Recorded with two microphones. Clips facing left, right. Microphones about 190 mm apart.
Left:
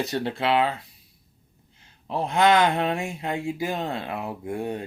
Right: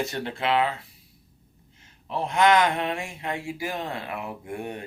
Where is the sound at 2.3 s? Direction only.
25° left (ahead or behind).